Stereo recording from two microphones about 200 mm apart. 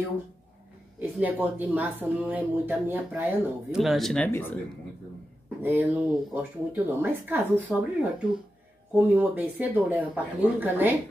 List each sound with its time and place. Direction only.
1.2 s speech: 10° right (ahead or behind); by 4.6 s 10° left (ahead or behind)
5.6 s speech: 10° right (ahead or behind)